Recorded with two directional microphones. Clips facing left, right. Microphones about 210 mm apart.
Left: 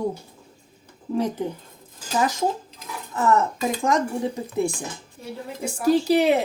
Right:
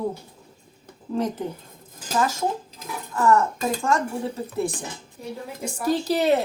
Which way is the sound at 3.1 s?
20° left (ahead or behind).